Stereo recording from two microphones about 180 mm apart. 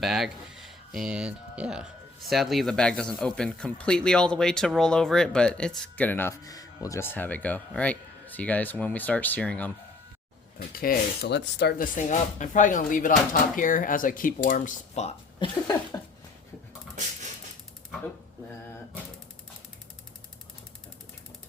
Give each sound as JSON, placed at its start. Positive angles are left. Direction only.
{"t": 0.0, "sound": "speech", "side_deg": 0}
{"t": 10.7, "sound": "speech", "side_deg": 55}
{"t": 11.9, "sound": "speech", "side_deg": 45}
{"t": 15.4, "sound": "a sound", "side_deg": 20}